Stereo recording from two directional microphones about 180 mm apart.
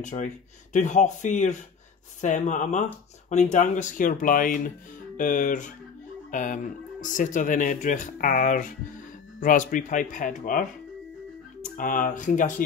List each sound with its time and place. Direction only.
0.0 s speech: 45° left (ahead or behind)
11.7 s speech: 50° left (ahead or behind)